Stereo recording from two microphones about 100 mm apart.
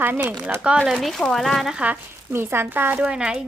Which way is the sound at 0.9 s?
Centre (ahead or behind).